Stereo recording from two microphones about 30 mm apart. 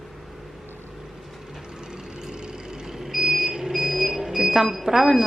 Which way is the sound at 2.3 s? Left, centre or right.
Right.